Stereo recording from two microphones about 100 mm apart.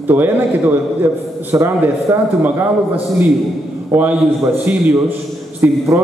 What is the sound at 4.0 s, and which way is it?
A man's voice, 20° right (ahead or behind).